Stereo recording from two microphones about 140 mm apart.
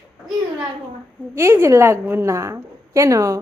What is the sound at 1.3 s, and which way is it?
A woman's voice, 15° right (ahead or behind).